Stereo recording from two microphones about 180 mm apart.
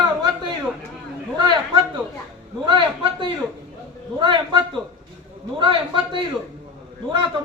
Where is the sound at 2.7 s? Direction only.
30° right (ahead or behind).